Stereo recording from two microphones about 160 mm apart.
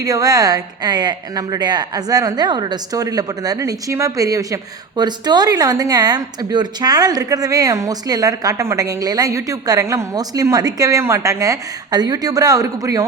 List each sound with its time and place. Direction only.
0.0 s a woman's voice: 20° right (ahead or behind)